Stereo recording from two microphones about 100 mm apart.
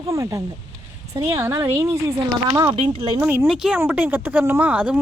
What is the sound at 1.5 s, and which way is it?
Speech, 25° right (ahead or behind).